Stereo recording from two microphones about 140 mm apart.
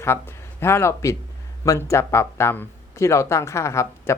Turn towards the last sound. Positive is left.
turn(degrees=20)  # may be behind; listen again after turning